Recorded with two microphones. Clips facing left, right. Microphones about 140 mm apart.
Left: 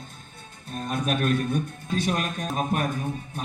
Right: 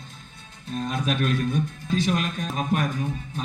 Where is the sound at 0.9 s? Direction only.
50° left (ahead or behind).